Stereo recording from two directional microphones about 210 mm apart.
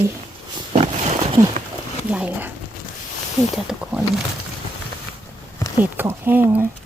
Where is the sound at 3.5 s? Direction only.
Centre (ahead or behind).